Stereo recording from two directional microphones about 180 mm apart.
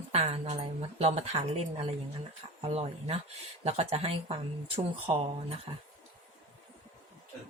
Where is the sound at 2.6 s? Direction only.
35° right (ahead or behind).